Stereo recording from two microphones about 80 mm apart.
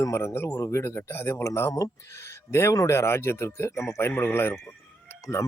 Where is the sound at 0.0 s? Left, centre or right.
Left.